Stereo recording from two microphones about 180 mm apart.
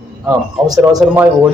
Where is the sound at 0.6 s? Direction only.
20° right (ahead or behind).